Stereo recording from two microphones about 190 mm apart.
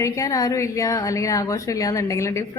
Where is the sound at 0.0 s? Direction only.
15° left (ahead or behind).